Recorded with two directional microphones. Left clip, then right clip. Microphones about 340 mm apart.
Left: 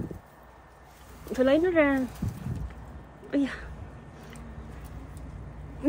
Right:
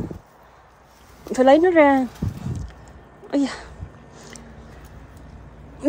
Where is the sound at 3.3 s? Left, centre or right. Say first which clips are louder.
Right 6 dB; centre.